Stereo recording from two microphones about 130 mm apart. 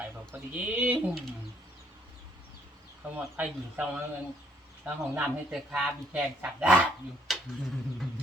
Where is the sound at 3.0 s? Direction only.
10° right (ahead or behind).